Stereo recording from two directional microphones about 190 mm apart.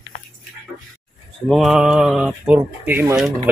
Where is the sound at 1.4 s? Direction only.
Centre (ahead or behind).